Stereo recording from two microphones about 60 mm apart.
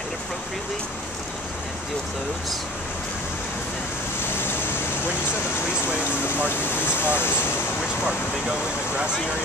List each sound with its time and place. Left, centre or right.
6.5 s speech: left